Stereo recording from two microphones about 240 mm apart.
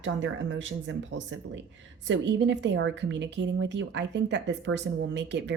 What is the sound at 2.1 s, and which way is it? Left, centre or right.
Speech, right.